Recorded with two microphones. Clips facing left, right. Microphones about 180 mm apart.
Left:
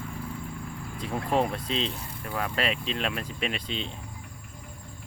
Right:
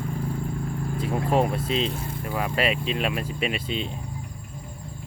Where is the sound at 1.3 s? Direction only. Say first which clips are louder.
Right 3 dB; 5° right (ahead or behind).